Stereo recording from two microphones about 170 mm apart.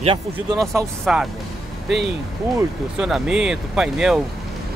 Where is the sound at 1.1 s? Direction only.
5° right (ahead or behind).